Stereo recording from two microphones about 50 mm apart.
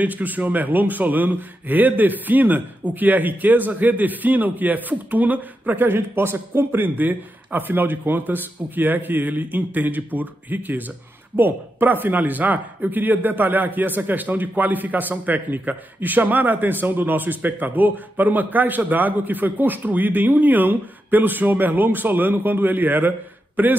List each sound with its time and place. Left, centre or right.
0.0 s speech: right
5.9 s speech: right